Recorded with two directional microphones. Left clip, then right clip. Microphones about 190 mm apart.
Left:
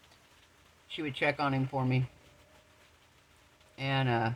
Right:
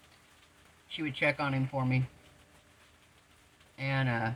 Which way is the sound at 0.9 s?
55° left (ahead or behind).